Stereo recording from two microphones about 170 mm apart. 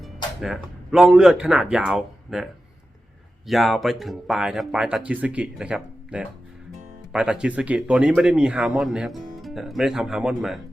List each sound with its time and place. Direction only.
0.0 s speech: centre (ahead or behind)